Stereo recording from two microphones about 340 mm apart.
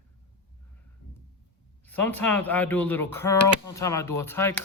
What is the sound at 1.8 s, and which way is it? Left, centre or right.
A man's voice, centre.